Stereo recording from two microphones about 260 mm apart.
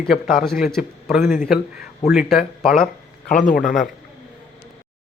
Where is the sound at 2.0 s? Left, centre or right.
Centre.